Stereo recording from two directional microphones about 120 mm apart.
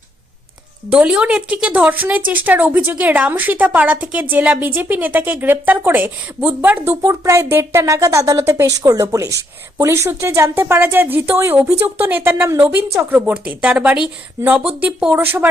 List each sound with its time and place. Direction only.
0.9 s a woman's voice: 10° right (ahead or behind)
7.0 s a woman's voice: 25° right (ahead or behind)